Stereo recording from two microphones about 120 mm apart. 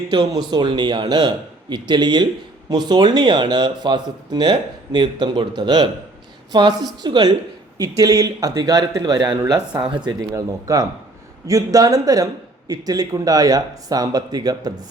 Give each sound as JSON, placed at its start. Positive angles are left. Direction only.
{"t": 0.1, "sound": "speech", "side_deg": -35}